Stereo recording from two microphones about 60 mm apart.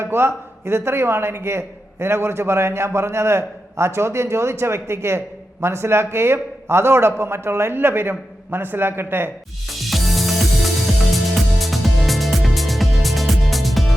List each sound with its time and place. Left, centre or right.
0.0 s a man's voice: right
9.6 s music: centre